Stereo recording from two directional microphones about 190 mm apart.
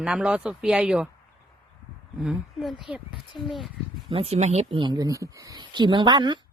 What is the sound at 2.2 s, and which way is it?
Speech, centre (ahead or behind).